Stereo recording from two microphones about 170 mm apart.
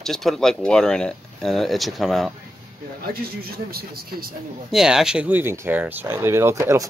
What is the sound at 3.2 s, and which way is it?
Speech, 65° right (ahead or behind).